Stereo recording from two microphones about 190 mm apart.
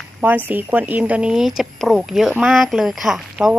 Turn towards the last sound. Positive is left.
turn(degrees=0)  # may be behind; listen again after turning